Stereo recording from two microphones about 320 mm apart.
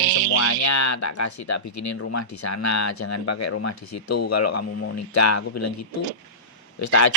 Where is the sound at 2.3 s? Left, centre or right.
Left.